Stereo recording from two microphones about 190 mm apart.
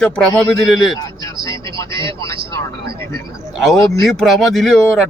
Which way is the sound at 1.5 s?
25° right (ahead or behind).